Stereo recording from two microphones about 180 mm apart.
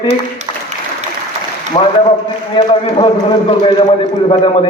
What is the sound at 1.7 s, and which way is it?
A man's voice, 30° left (ahead or behind).